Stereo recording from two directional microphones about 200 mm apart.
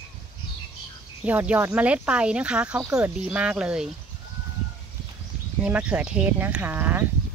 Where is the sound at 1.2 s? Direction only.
5° right (ahead or behind).